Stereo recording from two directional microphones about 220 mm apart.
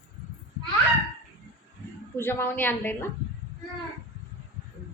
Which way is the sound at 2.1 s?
10° left (ahead or behind).